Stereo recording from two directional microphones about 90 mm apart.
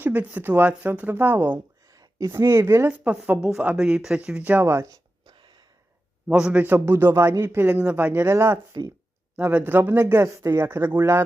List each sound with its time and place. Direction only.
0.0 s speech: 15° right (ahead or behind)
1.9 s speech: 40° right (ahead or behind)
5.2 s a sound: 55° right (ahead or behind)
6.2 s speech: 10° right (ahead or behind)
6.6 s speech: 25° right (ahead or behind)
8.7 s speech: 45° right (ahead or behind)
9.3 s speech: 20° right (ahead or behind)